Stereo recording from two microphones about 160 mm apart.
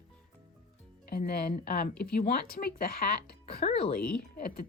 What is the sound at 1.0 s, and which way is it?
Speech, 75° left (ahead or behind).